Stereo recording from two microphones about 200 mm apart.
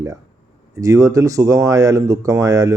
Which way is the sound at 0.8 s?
15° right (ahead or behind).